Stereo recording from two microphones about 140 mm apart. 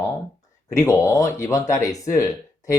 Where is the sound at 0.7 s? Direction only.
20° left (ahead or behind).